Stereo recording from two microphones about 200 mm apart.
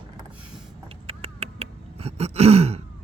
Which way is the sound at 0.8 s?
30° right (ahead or behind).